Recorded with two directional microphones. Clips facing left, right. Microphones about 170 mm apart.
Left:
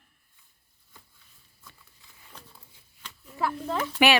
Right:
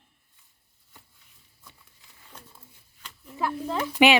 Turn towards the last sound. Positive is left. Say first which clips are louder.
# right 3 dB
turn(degrees=-15)  # may be behind; listen again after turning